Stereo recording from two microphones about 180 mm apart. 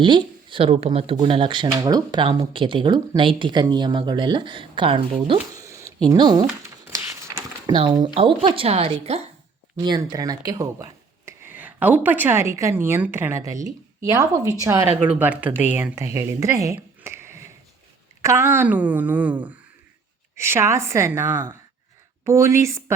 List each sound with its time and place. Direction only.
0.0 s speech: 25° right (ahead or behind)
5.5 s a sound: 15° right (ahead or behind)
6.1 s speech: 25° right (ahead or behind)
6.8 s a sound: 15° right (ahead or behind)
7.7 s a woman's voice: 25° right (ahead or behind)
9.7 s a woman's voice: 20° right (ahead or behind)